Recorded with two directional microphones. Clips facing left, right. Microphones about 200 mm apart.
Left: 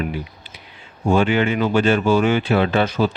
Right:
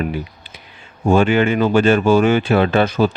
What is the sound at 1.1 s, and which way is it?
Speech, 50° right (ahead or behind).